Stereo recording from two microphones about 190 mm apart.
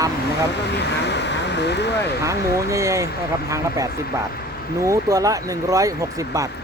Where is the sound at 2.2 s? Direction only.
15° right (ahead or behind).